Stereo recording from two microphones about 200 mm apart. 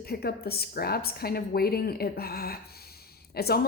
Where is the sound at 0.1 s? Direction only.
50° left (ahead or behind).